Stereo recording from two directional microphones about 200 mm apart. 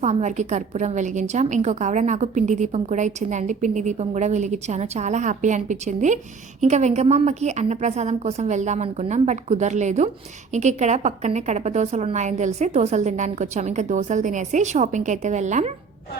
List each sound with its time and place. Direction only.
0.0 s a woman's voice: 35° right (ahead or behind)